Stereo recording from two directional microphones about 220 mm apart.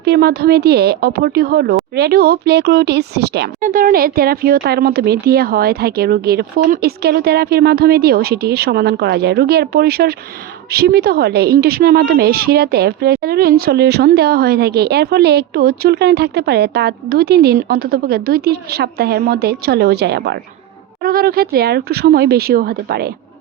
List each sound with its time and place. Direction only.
0.0 s speech: 45° right (ahead or behind)